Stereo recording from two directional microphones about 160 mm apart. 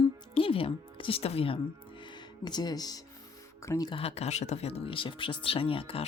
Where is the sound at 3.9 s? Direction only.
40° left (ahead or behind).